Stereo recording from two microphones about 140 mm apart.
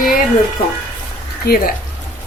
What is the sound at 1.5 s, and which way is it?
Speech, 90° left.